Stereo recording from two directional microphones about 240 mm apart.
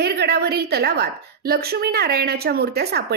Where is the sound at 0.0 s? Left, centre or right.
Right.